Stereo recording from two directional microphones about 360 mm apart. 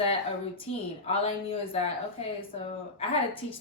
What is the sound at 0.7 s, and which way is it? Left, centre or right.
A woman's voice, centre.